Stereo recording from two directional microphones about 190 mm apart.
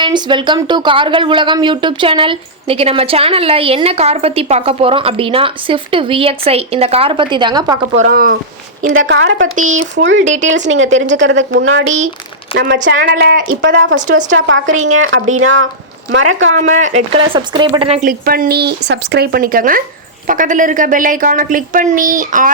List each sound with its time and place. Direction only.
0.0 s speech: 25° right (ahead or behind)
8.0 s a woman's voice: 50° right (ahead or behind)
9.0 s speech: 75° right (ahead or behind)
13.0 s speech: 55° right (ahead or behind)
13.6 s speech: 70° right (ahead or behind); by 15.6 s 90° right
16.6 s speech: 40° right (ahead or behind)
18.1 s a woman's voice: 50° right (ahead or behind)